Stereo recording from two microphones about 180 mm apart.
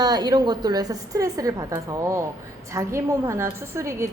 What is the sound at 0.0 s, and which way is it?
A woman's voice, 20° right (ahead or behind).